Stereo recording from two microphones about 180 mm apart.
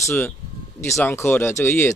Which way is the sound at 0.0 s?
10° left (ahead or behind).